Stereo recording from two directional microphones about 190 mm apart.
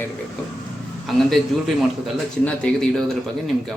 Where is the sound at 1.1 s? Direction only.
Centre (ahead or behind).